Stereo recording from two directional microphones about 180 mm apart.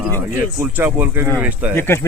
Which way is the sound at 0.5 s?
15° right (ahead or behind).